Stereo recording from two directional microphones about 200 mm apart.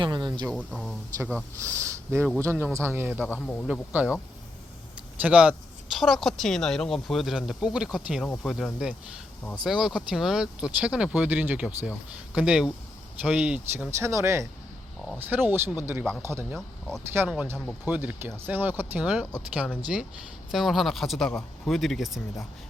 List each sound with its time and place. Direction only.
0.0 s speech: 20° right (ahead or behind)
0.5 s speech: centre (ahead or behind)
1.5 s speech: 15° right (ahead or behind)
3.2 s speech: 5° left (ahead or behind)
3.7 s speech: 5° right (ahead or behind)
5.2 s speech: 5° right (ahead or behind)